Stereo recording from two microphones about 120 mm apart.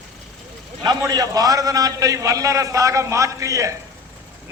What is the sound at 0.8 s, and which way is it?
A man's voice, 35° right (ahead or behind).